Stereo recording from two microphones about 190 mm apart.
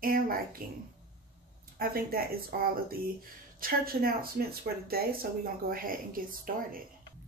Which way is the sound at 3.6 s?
50° right (ahead or behind).